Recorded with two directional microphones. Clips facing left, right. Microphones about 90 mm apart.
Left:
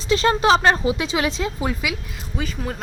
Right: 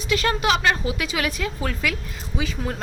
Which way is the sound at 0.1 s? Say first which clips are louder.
Left 5 dB; 30° left (ahead or behind).